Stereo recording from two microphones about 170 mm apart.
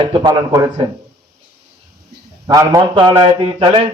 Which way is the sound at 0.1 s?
25° right (ahead or behind).